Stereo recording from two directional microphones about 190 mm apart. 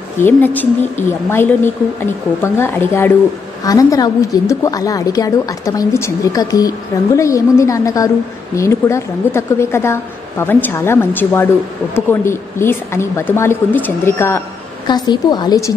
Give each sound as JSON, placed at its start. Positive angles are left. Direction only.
{"t": 0.2, "sound": "a woman's voice", "side_deg": 10}